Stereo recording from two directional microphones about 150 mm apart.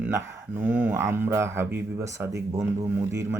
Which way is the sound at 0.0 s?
15° right (ahead or behind).